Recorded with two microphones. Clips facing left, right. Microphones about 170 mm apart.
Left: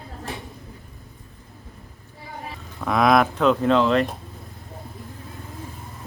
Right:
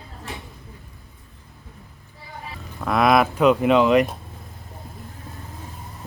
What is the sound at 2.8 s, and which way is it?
Speech, centre (ahead or behind).